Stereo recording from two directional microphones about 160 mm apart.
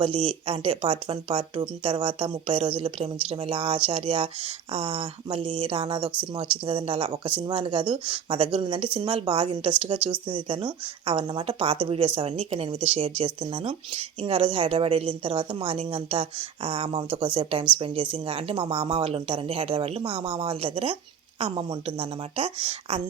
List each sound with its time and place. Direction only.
0.0 s speech: 35° right (ahead or behind)